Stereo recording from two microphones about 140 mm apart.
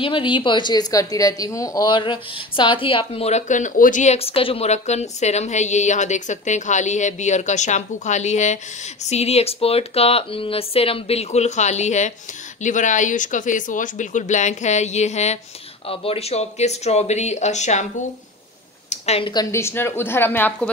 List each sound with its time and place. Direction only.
0.0 s a woman's voice: 35° left (ahead or behind); by 17.8 s 55° left (ahead or behind)
18.9 s a sound: 50° left (ahead or behind)
19.3 s a woman's voice: 20° left (ahead or behind)